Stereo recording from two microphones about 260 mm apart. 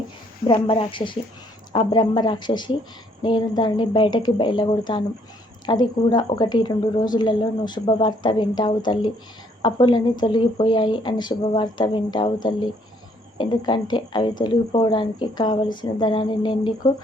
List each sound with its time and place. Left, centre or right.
0.4 s speech: centre